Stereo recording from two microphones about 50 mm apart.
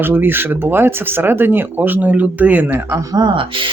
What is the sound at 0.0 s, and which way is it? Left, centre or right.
Speech, right.